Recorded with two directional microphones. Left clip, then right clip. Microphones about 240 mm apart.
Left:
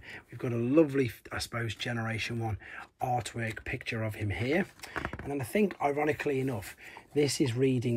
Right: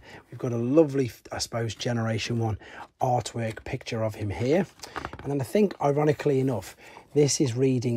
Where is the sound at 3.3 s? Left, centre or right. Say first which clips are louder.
Right 3 dB; centre.